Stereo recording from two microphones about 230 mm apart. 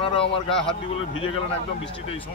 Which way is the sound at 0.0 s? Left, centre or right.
Left.